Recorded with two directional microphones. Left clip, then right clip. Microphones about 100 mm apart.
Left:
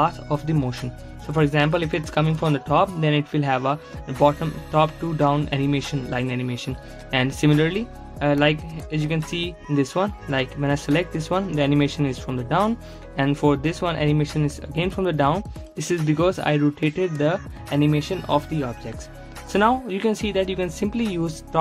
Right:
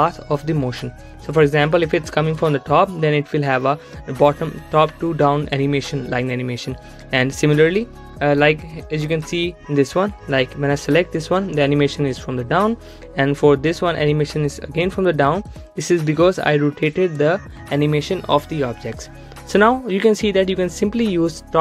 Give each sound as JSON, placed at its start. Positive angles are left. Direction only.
{"t": 0.0, "sound": "speech", "side_deg": -40}
{"t": 17.6, "sound": "speech", "side_deg": -50}
{"t": 19.5, "sound": "speech", "side_deg": -45}